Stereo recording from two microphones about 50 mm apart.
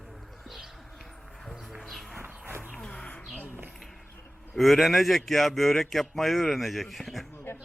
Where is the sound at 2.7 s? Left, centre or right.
Centre.